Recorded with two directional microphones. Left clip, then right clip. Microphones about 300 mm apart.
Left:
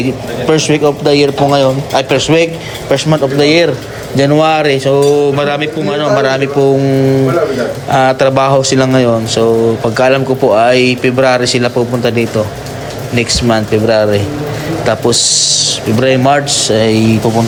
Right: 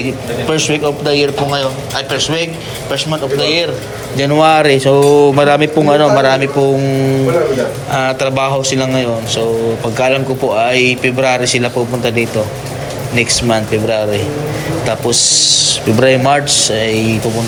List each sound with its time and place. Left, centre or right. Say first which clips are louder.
0.4 s speech: left 5 dB; centre
3.4 s a man's voice: left 5 dB; left
4.2 s speech: even; centre